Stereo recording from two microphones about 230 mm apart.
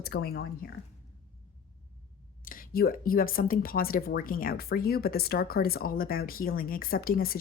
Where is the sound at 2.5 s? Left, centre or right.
Left.